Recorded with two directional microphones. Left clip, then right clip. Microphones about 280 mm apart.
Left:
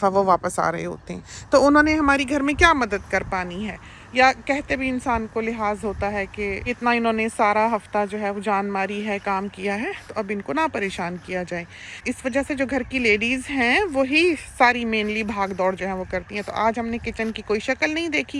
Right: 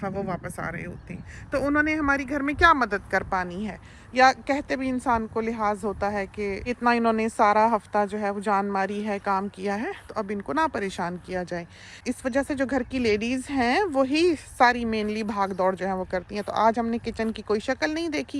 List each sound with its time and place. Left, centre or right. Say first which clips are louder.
0.0 s speech: left 13 dB; centre